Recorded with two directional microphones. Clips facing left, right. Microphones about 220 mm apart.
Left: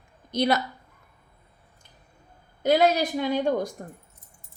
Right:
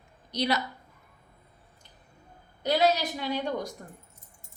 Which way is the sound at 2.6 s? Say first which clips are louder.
Left 4 dB; 50° left (ahead or behind).